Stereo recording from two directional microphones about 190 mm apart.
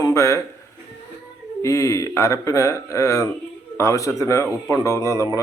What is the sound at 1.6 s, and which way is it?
Speech, 15° left (ahead or behind).